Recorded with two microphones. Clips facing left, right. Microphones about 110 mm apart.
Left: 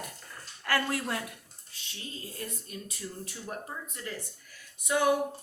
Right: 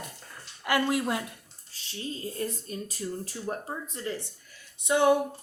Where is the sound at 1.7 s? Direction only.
30° right (ahead or behind).